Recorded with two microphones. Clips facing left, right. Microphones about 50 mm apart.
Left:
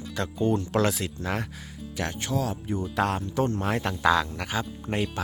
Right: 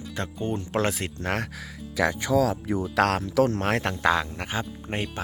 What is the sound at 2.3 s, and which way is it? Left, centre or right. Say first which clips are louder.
Speech: right 7 dB; right.